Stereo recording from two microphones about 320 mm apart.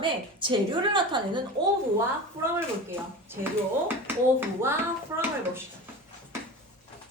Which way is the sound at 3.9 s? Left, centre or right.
Centre.